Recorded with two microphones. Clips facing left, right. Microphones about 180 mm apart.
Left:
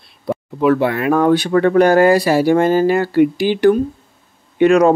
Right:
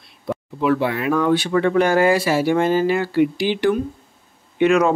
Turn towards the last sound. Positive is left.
turn(degrees=35)  # may be behind; listen again after turning